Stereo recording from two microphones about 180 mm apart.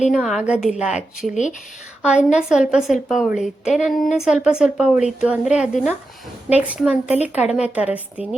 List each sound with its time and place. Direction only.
0.1 s a woman's voice: 5° right (ahead or behind)